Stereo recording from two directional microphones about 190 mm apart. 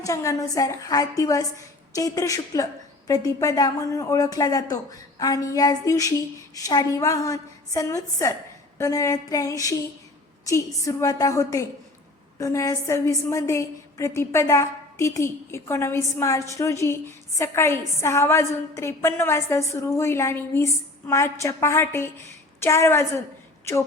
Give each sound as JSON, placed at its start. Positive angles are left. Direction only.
{"t": 0.0, "sound": "speech", "side_deg": 15}